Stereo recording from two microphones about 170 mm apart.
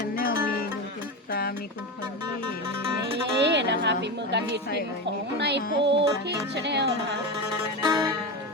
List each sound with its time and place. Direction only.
0.2 s music: 60° left (ahead or behind)
3.4 s speech: 90° right
5.4 s music: 85° right
5.8 s speech: 90° right
7.8 s music: 20° right (ahead or behind)